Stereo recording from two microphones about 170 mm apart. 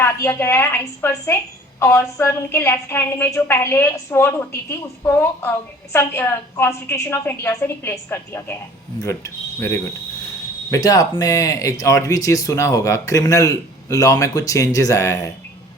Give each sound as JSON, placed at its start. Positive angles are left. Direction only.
{"t": 0.0, "sound": "a woman's voice", "side_deg": 15}